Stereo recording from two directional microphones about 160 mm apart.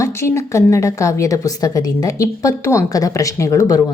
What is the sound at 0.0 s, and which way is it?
A woman's voice, 15° left (ahead or behind).